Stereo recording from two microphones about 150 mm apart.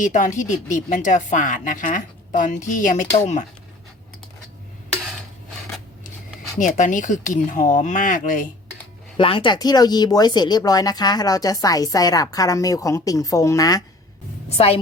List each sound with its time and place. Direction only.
0.0 s a woman's voice: 60° left (ahead or behind)
6.6 s a woman's voice: 60° left (ahead or behind)
9.1 s speech: 35° left (ahead or behind)